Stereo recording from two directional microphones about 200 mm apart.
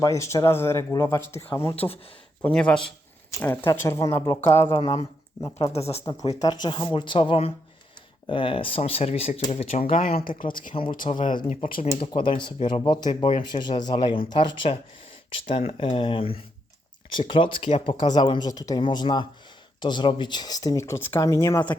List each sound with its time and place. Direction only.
0.0 s speech: 15° left (ahead or behind)
1.7 s speech: 30° left (ahead or behind)
2.4 s a man's voice: 5° left (ahead or behind)
5.5 s speech: 30° left (ahead or behind)
6.1 s speech: 15° left (ahead or behind)
10.2 s speech: 45° left (ahead or behind)
11.1 s speech: 30° left (ahead or behind)